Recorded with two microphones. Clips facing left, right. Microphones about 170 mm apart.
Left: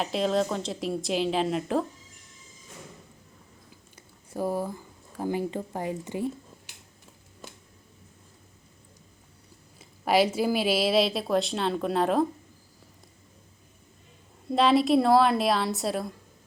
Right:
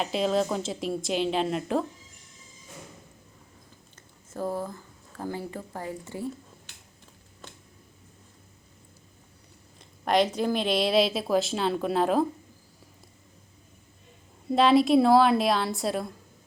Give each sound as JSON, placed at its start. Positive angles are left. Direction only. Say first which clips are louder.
{"t": 0.0, "sound": "a woman's voice", "louder": "even", "side_deg": 0}
{"t": 3.9, "sound": "speech", "louder": "left 3 dB", "side_deg": 10}
{"t": 9.7, "sound": "a woman's voice", "louder": "left 1 dB", "side_deg": 5}
{"t": 14.5, "sound": "a woman's voice", "louder": "right 1 dB", "side_deg": 0}